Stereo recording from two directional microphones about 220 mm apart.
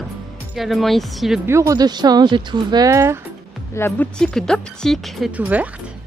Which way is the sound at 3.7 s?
10° left (ahead or behind).